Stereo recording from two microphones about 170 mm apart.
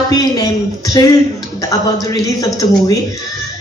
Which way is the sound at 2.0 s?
20° left (ahead or behind).